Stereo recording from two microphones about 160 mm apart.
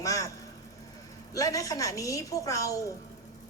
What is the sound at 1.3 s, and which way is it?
A woman's voice, 20° left (ahead or behind).